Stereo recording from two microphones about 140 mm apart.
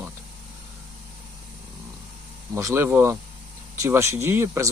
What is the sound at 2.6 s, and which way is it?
Speech, 20° right (ahead or behind).